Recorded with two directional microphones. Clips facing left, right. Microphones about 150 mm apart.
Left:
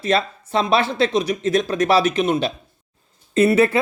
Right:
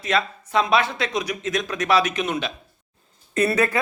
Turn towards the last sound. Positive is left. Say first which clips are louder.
# left 5 dB
turn(degrees=25)  # may be behind; listen again after turning